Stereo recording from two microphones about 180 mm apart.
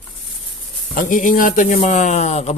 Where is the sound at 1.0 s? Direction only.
50° left (ahead or behind).